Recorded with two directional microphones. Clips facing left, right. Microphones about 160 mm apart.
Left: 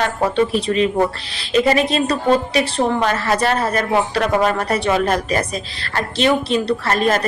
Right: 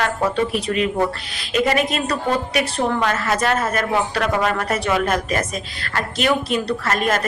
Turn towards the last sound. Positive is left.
turn(degrees=30)  # may be behind; listen again after turning